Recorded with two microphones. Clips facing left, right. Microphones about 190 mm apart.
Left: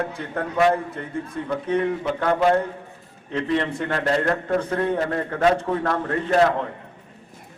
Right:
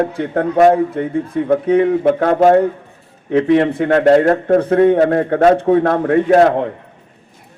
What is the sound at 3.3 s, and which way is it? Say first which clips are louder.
A man's voice: right 11 dB; 60° right (ahead or behind).